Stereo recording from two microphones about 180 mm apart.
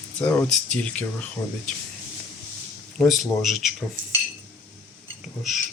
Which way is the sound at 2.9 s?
Centre (ahead or behind).